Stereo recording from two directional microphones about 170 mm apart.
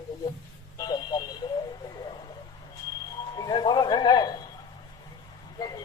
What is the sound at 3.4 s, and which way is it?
Mantra, 25° left (ahead or behind).